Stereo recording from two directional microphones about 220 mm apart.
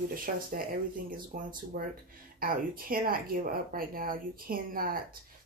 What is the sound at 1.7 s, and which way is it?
Speech, 40° right (ahead or behind).